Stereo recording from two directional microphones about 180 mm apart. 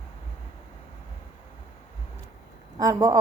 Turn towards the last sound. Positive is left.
turn(degrees=-15)  # may be behind; listen again after turning